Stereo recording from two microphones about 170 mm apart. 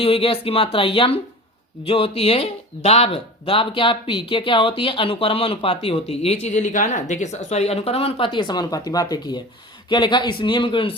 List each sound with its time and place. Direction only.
0.0 s speech: 35° left (ahead or behind)